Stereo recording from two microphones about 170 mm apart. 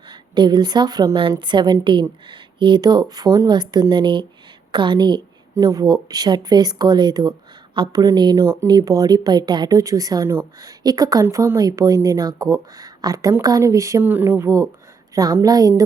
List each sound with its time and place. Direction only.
0.1 s a woman's voice: 25° right (ahead or behind)